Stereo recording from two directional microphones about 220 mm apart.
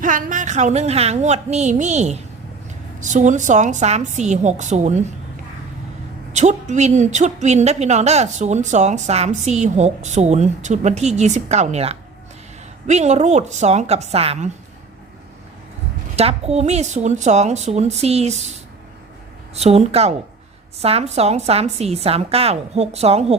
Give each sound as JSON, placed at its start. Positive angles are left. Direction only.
{"t": 0.0, "sound": "a woman's voice", "side_deg": -35}
{"t": 6.3, "sound": "a woman's voice", "side_deg": -35}
{"t": 16.1, "sound": "a woman's voice", "side_deg": -30}